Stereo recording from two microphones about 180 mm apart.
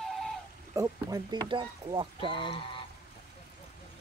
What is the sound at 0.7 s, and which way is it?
Speech, 20° right (ahead or behind).